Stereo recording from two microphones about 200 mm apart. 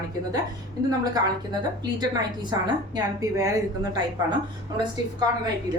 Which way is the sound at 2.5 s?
20° right (ahead or behind).